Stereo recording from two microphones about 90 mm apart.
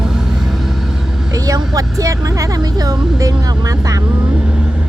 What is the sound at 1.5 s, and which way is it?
Speech, 40° right (ahead or behind).